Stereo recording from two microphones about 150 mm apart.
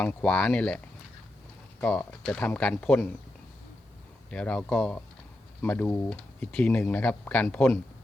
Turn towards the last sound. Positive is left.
turn(degrees=10)  # may be behind; listen again after turning